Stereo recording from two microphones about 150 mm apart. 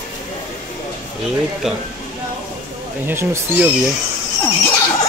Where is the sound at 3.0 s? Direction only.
15° right (ahead or behind).